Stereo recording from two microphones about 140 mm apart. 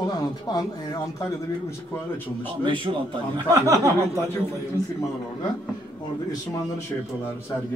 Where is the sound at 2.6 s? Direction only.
35° right (ahead or behind).